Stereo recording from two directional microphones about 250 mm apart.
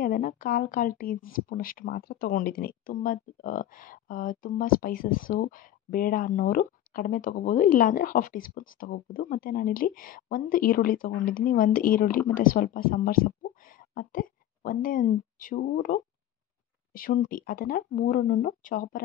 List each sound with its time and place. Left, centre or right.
0.0 s a woman's voice: left